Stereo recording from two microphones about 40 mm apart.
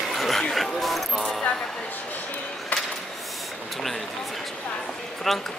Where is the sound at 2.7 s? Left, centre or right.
Left.